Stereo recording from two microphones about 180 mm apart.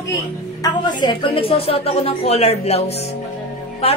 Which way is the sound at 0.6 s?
25° left (ahead or behind).